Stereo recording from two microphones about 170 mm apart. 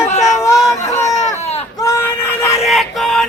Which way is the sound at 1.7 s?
20° left (ahead or behind).